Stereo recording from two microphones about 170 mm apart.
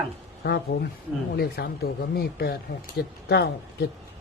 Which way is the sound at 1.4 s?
65° left (ahead or behind).